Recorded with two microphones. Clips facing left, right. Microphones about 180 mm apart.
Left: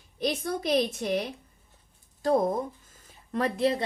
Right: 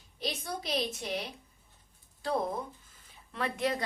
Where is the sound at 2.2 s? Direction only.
45° left (ahead or behind).